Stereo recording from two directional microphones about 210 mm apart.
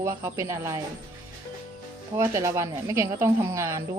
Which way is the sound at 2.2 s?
15° right (ahead or behind).